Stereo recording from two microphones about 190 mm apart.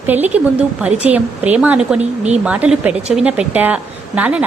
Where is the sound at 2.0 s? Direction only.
35° right (ahead or behind).